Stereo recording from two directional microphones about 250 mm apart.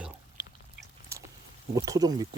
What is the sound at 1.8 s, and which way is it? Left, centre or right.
Speech, centre.